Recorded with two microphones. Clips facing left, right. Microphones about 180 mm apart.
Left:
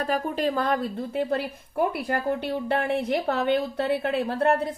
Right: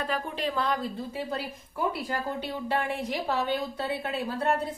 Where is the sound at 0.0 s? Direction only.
45° left (ahead or behind).